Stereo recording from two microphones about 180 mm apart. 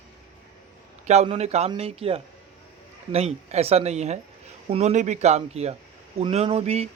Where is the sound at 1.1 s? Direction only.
35° right (ahead or behind).